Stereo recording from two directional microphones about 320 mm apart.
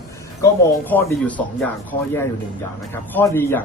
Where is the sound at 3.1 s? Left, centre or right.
Centre.